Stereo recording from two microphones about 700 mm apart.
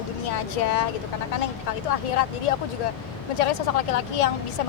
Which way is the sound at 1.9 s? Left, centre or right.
Left.